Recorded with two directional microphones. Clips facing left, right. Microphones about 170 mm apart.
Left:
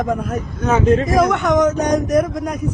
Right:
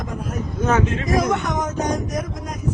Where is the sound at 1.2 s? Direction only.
70° left (ahead or behind).